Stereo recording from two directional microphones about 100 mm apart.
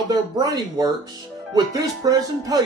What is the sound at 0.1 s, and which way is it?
Speech, 35° right (ahead or behind).